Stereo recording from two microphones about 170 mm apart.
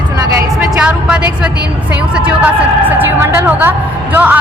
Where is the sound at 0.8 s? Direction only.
5° right (ahead or behind).